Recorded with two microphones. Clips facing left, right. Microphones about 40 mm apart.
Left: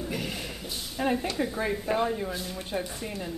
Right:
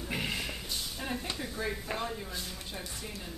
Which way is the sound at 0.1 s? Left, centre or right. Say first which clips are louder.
Left 1 dB; centre.